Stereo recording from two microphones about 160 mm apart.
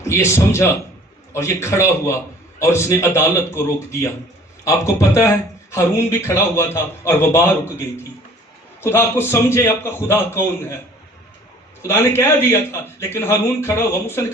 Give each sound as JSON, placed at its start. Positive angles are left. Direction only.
{"t": 0.1, "sound": "a man's voice", "side_deg": 15}
{"t": 11.9, "sound": "a man's voice", "side_deg": 15}